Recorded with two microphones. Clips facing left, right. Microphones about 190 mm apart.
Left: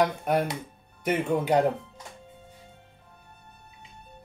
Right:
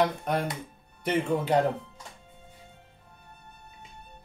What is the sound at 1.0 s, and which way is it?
Speech, 10° left (ahead or behind).